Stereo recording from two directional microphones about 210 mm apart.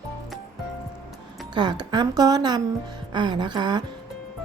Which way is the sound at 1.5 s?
20° right (ahead or behind).